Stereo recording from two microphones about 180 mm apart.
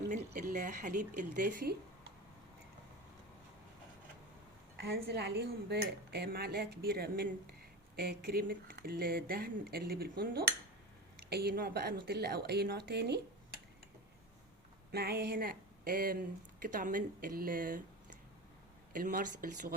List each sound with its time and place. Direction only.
0.1 s speech: 45° right (ahead or behind)
4.8 s speech: 65° right (ahead or behind)
14.9 s a sound: 65° right (ahead or behind)
16.6 s speech: 50° right (ahead or behind)